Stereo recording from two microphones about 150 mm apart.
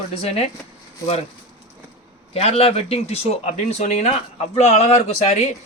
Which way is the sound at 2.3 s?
40° left (ahead or behind).